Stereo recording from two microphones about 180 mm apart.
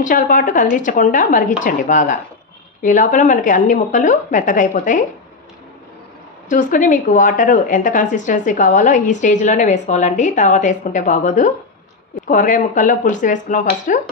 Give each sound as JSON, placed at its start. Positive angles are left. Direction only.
{"t": 0.0, "sound": "a woman's voice", "side_deg": 45}
{"t": 6.5, "sound": "a woman's voice", "side_deg": 45}